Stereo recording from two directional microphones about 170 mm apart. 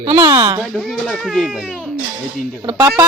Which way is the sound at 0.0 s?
25° right (ahead or behind).